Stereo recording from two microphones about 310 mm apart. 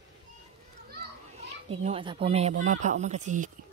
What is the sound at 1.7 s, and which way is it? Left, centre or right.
Speech, centre.